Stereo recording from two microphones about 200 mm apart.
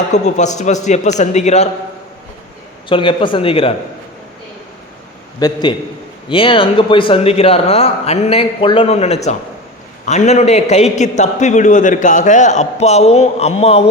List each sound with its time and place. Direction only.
0.1 s a man's voice: 35° left (ahead or behind)
2.9 s a man's voice: 25° left (ahead or behind)
5.4 s a man's voice: 20° left (ahead or behind)